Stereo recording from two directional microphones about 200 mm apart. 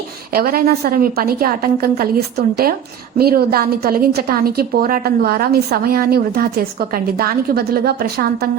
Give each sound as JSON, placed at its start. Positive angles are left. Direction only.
{"t": 0.3, "sound": "a woman's voice", "side_deg": -50}